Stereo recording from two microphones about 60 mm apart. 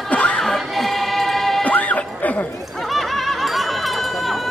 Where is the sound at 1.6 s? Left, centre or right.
Left.